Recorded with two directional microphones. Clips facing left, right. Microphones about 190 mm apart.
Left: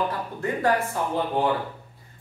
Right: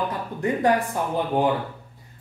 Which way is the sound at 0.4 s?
15° right (ahead or behind).